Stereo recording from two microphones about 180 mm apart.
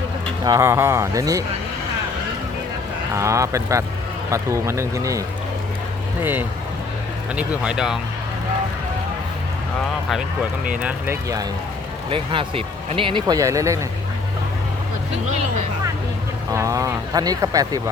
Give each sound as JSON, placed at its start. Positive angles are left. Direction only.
{"t": 0.4, "sound": "speech", "side_deg": -15}
{"t": 3.2, "sound": "speech", "side_deg": -15}
{"t": 7.3, "sound": "speech", "side_deg": -5}
{"t": 10.7, "sound": "speech", "side_deg": -5}
{"t": 12.1, "sound": "speech", "side_deg": -30}
{"t": 16.5, "sound": "speech", "side_deg": -15}